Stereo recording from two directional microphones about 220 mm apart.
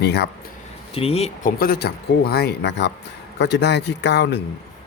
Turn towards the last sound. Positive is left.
turn(degrees=50)  # may be behind; listen again after turning